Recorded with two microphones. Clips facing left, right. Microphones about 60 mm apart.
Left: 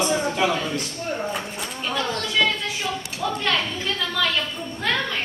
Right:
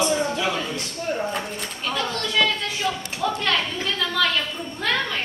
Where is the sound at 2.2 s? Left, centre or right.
Centre.